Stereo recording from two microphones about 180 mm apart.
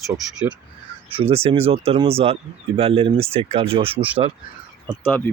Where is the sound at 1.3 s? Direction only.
35° right (ahead or behind).